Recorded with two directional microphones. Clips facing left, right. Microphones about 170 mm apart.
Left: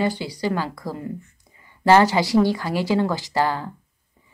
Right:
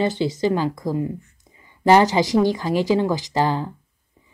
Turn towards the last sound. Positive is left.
turn(degrees=-20)  # may be behind; listen again after turning